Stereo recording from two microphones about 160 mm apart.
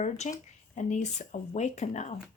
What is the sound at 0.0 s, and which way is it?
A woman's voice, 50° left (ahead or behind).